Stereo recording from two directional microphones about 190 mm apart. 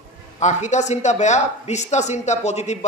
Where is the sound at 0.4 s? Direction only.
35° left (ahead or behind).